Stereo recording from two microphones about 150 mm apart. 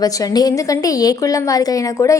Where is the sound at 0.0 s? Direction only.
25° left (ahead or behind).